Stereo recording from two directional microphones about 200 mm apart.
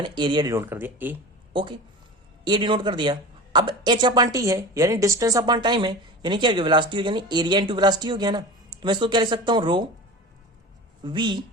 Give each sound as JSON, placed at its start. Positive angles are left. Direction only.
{"t": 0.0, "sound": "speech", "side_deg": -20}
{"t": 1.5, "sound": "speech", "side_deg": -25}
{"t": 11.0, "sound": "speech", "side_deg": -25}